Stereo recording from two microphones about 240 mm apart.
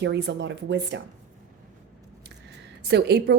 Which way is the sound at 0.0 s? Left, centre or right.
Right.